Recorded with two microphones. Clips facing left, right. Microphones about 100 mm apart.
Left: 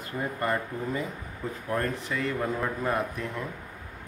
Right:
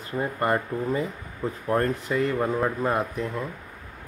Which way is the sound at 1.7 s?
35° right (ahead or behind).